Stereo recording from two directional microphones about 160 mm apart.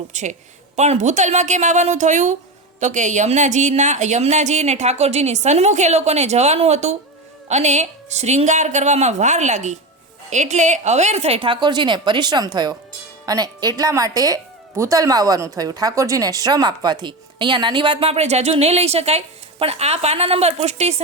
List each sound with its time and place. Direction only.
0.1 s a woman's voice: 50° right (ahead or behind)